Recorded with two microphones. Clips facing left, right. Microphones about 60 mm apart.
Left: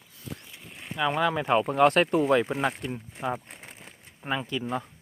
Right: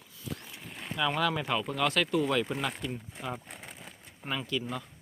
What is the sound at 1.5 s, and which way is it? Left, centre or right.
Speech, left.